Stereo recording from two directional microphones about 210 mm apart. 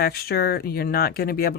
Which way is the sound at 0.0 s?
50° left (ahead or behind).